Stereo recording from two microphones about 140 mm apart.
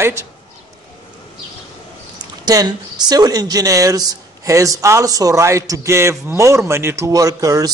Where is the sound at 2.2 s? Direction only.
30° right (ahead or behind).